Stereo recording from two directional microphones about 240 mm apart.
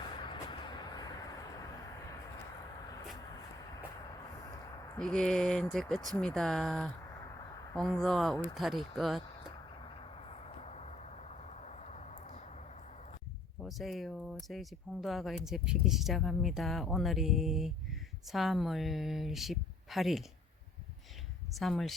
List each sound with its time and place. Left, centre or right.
0.2 s vehicle: centre
4.9 s speech: centre
9.8 s a sound: left
13.6 s speech: centre
21.5 s speech: centre